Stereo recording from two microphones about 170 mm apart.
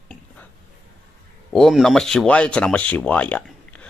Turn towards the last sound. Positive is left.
turn(degrees=10)  # may be behind; listen again after turning